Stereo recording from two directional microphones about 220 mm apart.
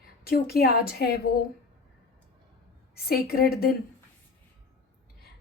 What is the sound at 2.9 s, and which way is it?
Speech, 45° left (ahead or behind).